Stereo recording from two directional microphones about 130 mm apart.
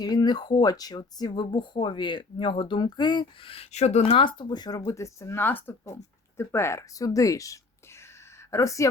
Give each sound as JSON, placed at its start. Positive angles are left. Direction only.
{"t": 0.0, "sound": "speech", "side_deg": 30}
{"t": 4.0, "sound": "speech", "side_deg": 40}